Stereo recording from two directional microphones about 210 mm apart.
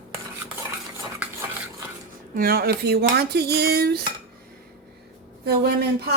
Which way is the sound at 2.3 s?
45° right (ahead or behind).